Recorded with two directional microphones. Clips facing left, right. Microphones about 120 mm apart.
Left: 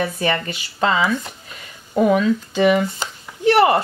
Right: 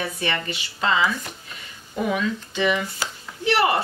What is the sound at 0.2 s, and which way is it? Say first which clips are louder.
Speech: left 5 dB; 40° left (ahead or behind).